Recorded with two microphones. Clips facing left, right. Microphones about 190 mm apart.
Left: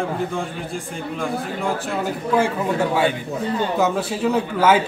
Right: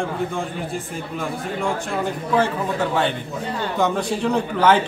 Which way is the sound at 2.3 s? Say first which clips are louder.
Left 1 dB; 10° left (ahead or behind).